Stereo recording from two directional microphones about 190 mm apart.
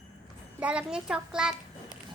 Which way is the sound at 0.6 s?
5° right (ahead or behind).